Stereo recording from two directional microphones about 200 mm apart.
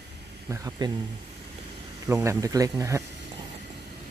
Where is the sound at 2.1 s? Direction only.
15° right (ahead or behind).